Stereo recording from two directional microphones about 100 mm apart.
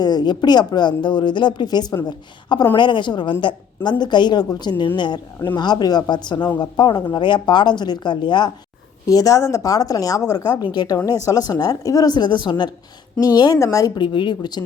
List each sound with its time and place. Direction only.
0.0 s a woman's voice: 45° left (ahead or behind)
9.0 s a woman's voice: 35° left (ahead or behind)